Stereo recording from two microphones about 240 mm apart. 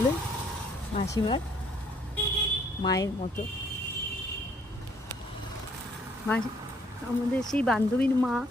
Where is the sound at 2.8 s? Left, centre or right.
Centre.